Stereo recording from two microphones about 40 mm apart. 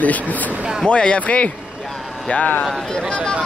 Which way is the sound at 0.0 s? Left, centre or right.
Left.